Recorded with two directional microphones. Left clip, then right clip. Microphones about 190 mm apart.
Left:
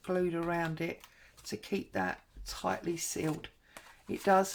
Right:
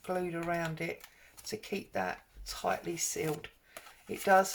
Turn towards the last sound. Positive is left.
turn(degrees=45)  # may be behind; listen again after turning